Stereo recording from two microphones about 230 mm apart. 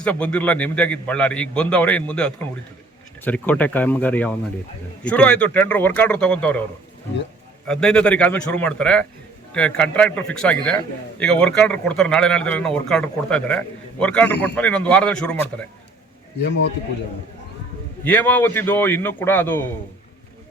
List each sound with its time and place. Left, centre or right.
0.0 s a man's voice: centre
7.7 s a man's voice: centre
16.4 s a man's voice: left
18.0 s a man's voice: centre